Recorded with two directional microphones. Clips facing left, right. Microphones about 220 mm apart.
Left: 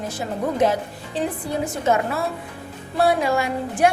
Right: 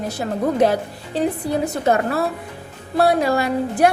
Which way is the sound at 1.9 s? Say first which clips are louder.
Right 2 dB; 35° right (ahead or behind).